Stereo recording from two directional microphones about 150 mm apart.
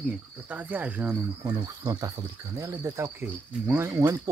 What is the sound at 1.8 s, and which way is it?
Cricket, 25° right (ahead or behind).